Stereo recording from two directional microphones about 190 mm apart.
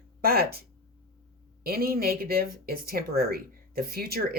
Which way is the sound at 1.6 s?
50° right (ahead or behind).